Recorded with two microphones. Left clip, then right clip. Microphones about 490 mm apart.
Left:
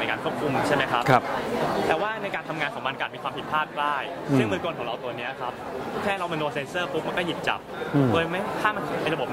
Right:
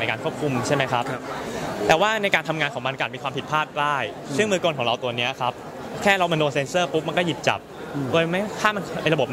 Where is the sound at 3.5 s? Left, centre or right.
Right.